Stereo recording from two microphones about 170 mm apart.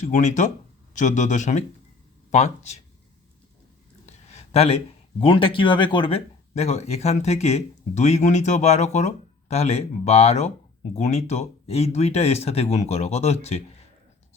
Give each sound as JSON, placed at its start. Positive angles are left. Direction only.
{"t": 0.0, "sound": "a man's voice", "side_deg": 45}
{"t": 4.0, "sound": "a sound", "side_deg": 40}
{"t": 5.2, "sound": "speech", "side_deg": 30}